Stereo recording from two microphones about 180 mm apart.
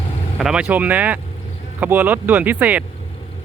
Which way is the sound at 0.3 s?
5° right (ahead or behind).